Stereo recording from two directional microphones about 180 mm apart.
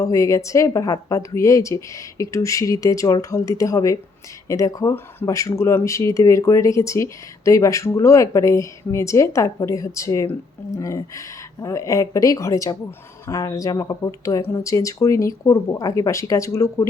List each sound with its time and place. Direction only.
0.0 s speech: 15° left (ahead or behind)